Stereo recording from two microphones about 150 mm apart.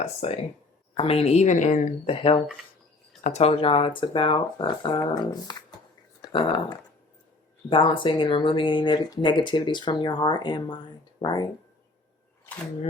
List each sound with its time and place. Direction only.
0.0 s speech: 45° left (ahead or behind)
2.0 s speech: 40° left (ahead or behind)